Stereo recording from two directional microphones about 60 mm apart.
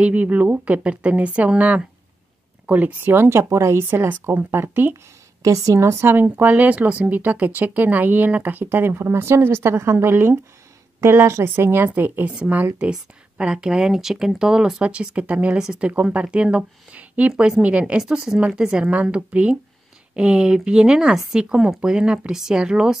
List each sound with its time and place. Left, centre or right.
0.0 s speech: right
3.1 s a woman's voice: right
4.1 s speech: right
5.4 s a woman's voice: right
6.3 s a woman's voice: right
11.4 s speech: right
11.9 s speech: right
13.4 s speech: centre
15.9 s speech: right